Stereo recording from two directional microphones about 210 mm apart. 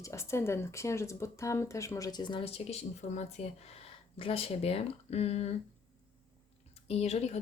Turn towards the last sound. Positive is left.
turn(degrees=30)  # may be behind; listen again after turning